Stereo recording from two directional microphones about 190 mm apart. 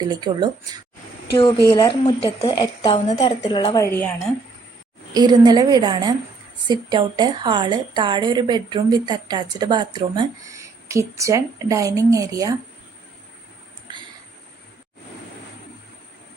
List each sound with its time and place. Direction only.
0.0 s a woman's voice: 20° right (ahead or behind)
1.4 s speech: 25° left (ahead or behind)
3.8 s a woman's voice: 10° left (ahead or behind)
5.1 s a woman's voice: 20° right (ahead or behind)